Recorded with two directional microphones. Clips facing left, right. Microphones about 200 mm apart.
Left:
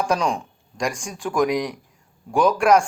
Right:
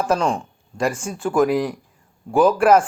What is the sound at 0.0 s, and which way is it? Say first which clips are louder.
A man's voice: right 2 dB; 5° right (ahead or behind).